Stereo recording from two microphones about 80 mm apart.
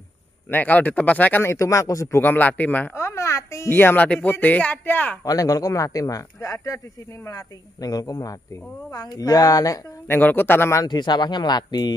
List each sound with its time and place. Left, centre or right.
0.5 s speech: left
2.2 s speech: left
2.9 s speech: left
5.2 s speech: left
10.0 s speech: left
10.9 s speech: left